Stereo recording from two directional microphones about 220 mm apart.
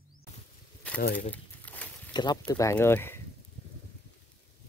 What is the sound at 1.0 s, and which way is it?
Speech, 45° left (ahead or behind).